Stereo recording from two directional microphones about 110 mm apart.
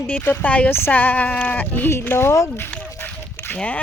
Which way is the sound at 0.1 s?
20° left (ahead or behind).